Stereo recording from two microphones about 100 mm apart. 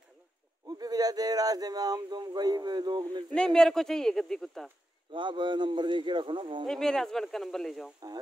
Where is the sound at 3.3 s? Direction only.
5° left (ahead or behind).